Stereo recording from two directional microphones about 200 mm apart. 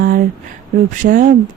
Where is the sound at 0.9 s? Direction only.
40° right (ahead or behind).